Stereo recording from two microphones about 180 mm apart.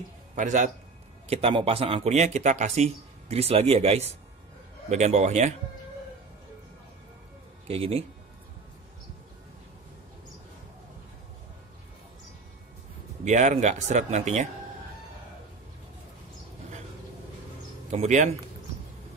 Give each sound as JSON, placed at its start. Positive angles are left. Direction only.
{"t": 0.4, "sound": "a man's voice", "side_deg": -45}
{"t": 1.3, "sound": "speech", "side_deg": -30}
{"t": 7.6, "sound": "speech", "side_deg": -35}
{"t": 13.2, "sound": "speech", "side_deg": -40}
{"t": 17.8, "sound": "speech", "side_deg": -40}